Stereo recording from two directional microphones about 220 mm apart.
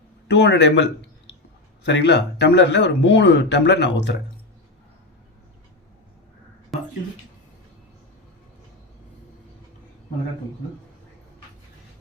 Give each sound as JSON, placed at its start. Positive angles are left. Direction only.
{"t": 0.3, "sound": "speech", "side_deg": 55}
{"t": 1.9, "sound": "speech", "side_deg": 50}